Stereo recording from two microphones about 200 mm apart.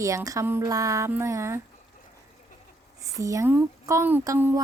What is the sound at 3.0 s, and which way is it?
Speech, 15° right (ahead or behind).